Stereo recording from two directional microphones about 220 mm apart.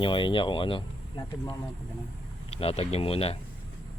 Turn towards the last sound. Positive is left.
turn(degrees=25)  # may be behind; listen again after turning